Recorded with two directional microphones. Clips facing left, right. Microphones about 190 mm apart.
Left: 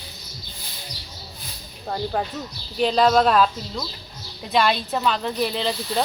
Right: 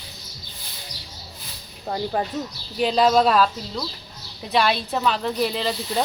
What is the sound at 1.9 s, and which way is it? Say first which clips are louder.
Speech: right 1 dB; 5° right (ahead or behind).